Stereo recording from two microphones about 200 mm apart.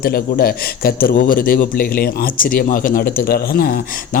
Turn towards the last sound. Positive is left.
turn(degrees=50)  # may be behind; listen again after turning